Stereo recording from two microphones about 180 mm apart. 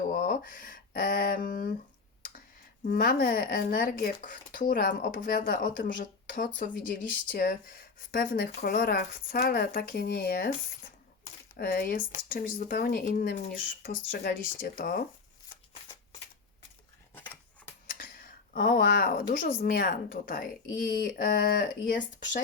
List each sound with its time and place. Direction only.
0.0 s speech: 50° left (ahead or behind)
2.8 s speech: 55° left (ahead or behind)
11.5 s speech: 55° left (ahead or behind)
17.8 s a sound: 50° left (ahead or behind)
19.4 s speech: 55° left (ahead or behind)